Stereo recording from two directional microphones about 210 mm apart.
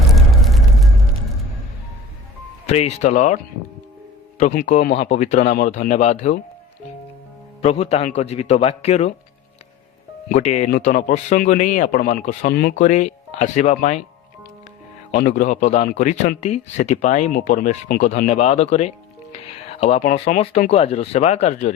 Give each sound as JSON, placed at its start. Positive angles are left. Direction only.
{"t": 0.1, "sound": "a sound", "side_deg": 0}
{"t": 2.6, "sound": "a man's voice", "side_deg": 30}
{"t": 7.6, "sound": "a man's voice", "side_deg": 30}
{"t": 10.2, "sound": "a man's voice", "side_deg": 35}
{"t": 15.1, "sound": "a man's voice", "side_deg": 40}